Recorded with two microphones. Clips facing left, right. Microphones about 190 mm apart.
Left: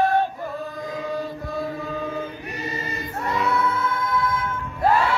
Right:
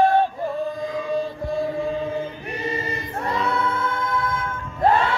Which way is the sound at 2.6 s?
30° right (ahead or behind).